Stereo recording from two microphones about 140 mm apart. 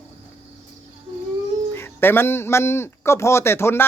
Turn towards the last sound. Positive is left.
turn(degrees=20)  # may be behind; listen again after turning